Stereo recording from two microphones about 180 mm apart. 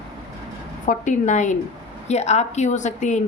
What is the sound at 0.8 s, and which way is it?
A woman's voice, 45° left (ahead or behind).